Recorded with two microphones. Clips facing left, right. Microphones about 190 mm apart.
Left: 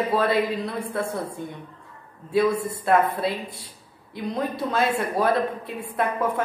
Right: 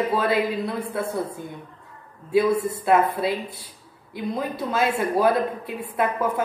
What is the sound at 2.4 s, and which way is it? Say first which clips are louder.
Speech: right 2 dB; 65° right (ahead or behind).